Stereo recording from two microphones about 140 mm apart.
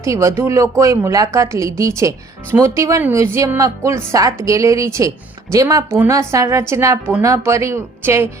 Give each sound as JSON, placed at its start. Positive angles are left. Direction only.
{"t": 0.0, "sound": "a woman's voice", "side_deg": -20}